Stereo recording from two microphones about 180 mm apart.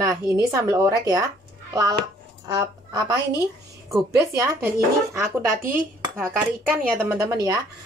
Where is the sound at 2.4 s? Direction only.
20° right (ahead or behind).